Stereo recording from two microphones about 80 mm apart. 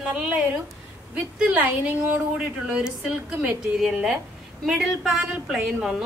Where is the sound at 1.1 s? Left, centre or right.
Centre.